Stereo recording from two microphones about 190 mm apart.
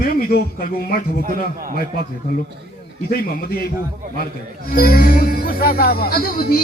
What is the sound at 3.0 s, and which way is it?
Speech, 50° left (ahead or behind).